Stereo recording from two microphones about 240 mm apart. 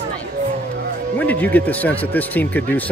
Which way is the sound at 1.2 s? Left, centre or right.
Centre.